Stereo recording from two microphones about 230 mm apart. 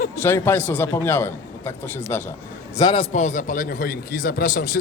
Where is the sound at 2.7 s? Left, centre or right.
Centre.